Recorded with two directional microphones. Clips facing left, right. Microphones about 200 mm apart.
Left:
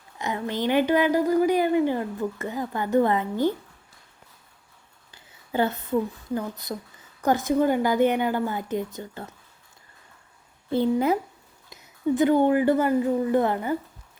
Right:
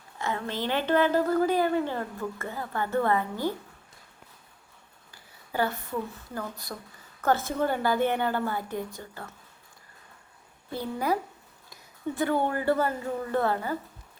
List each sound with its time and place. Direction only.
0.2 s a woman's voice: 15° left (ahead or behind)
5.1 s a woman's voice: 20° left (ahead or behind)
10.7 s a woman's voice: 25° left (ahead or behind)